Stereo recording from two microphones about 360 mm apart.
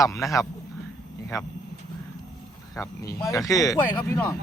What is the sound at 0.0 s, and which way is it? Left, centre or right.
Speech, centre.